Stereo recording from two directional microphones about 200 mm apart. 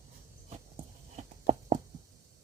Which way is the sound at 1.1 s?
35° right (ahead or behind).